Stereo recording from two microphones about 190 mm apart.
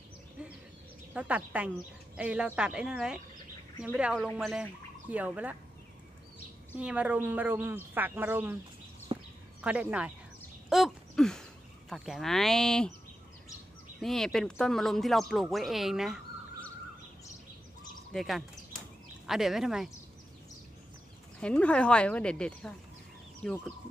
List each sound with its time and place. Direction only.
1.1 s speech: 5° right (ahead or behind)
6.8 s speech: 5° right (ahead or behind)
9.1 s a sound: 25° right (ahead or behind)
9.6 s speech: 5° right (ahead or behind)
10.7 s a sound: centre (ahead or behind)
11.9 s speech: centre (ahead or behind)
14.0 s speech: centre (ahead or behind)
18.1 s speech: centre (ahead or behind)
21.4 s speech: 5° left (ahead or behind)